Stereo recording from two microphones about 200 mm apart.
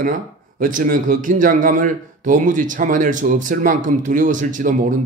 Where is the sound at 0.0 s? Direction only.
40° right (ahead or behind).